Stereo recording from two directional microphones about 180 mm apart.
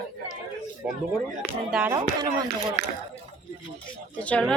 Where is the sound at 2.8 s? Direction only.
65° right (ahead or behind).